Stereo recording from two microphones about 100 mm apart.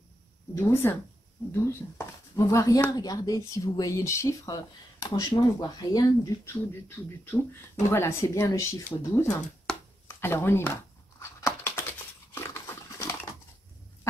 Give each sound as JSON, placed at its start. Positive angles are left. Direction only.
{"t": 0.6, "sound": "speech", "side_deg": 25}
{"t": 5.0, "sound": "speech", "side_deg": 40}
{"t": 6.4, "sound": "speech", "side_deg": 25}
{"t": 7.9, "sound": "speech", "side_deg": 25}
{"t": 9.7, "sound": "chopping", "side_deg": 5}
{"t": 10.0, "sound": "a sound", "side_deg": 25}